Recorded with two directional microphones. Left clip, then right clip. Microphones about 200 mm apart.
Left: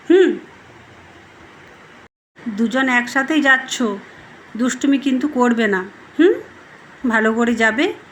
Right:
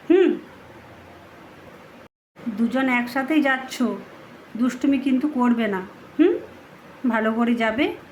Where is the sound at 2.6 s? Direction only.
15° left (ahead or behind).